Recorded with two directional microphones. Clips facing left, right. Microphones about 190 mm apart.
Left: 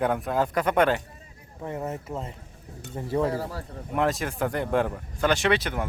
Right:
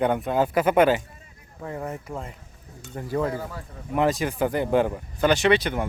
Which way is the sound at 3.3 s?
30° left (ahead or behind).